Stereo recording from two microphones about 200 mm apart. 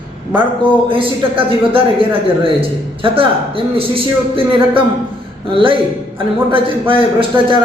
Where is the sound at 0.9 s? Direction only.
25° right (ahead or behind).